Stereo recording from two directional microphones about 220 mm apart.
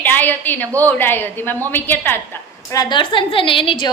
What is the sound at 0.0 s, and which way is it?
A woman's voice, 10° left (ahead or behind).